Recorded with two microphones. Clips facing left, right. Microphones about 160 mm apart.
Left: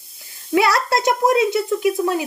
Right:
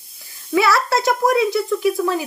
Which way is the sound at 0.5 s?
20° left (ahead or behind).